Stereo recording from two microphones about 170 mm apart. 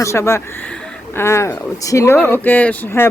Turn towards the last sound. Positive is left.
turn(degrees=10)  # may be behind; listen again after turning